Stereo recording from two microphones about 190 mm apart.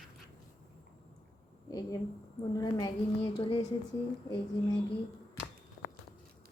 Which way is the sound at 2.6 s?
20° left (ahead or behind).